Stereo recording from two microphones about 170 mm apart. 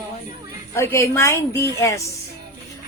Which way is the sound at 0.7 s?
15° left (ahead or behind).